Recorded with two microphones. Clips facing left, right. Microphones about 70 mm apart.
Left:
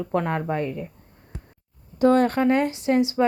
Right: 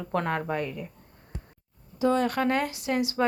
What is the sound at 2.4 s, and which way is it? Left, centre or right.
Speech, left.